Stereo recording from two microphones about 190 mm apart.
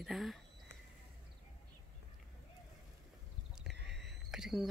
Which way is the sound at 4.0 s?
Centre (ahead or behind).